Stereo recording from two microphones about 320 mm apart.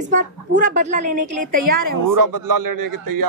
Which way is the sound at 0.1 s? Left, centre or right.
Right.